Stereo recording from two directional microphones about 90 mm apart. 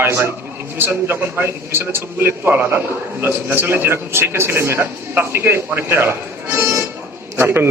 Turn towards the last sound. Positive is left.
turn(degrees=-25)  # may be behind; listen again after turning